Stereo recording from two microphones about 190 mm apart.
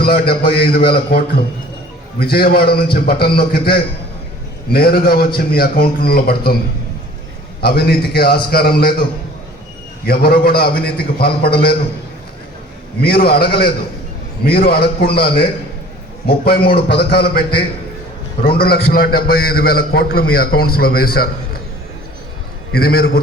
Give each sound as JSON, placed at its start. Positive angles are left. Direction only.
{"t": 0.0, "sound": "a man's voice", "side_deg": 55}
{"t": 7.6, "sound": "a man's voice", "side_deg": 55}
{"t": 10.1, "sound": "a man's voice", "side_deg": 55}
{"t": 13.0, "sound": "a man's voice", "side_deg": 55}
{"t": 22.7, "sound": "a man's voice", "side_deg": 55}